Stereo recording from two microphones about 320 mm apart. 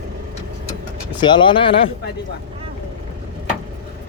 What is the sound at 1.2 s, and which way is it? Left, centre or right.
Speech, centre.